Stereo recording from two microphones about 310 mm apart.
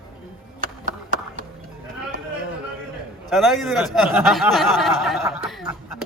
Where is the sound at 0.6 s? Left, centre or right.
Right.